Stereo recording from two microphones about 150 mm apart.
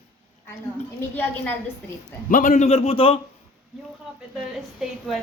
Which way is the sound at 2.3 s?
55° left (ahead or behind).